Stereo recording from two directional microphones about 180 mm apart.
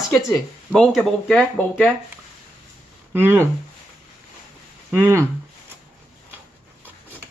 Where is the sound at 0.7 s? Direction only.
5° left (ahead or behind).